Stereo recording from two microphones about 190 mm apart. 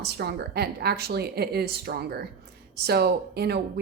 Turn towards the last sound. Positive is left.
turn(degrees=-60)  # may be behind; listen again after turning